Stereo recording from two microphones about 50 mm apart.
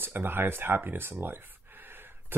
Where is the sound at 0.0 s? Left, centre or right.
Right.